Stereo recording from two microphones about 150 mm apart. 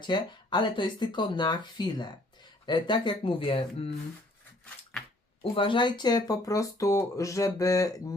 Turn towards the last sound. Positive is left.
turn(degrees=20)  # may be behind; listen again after turning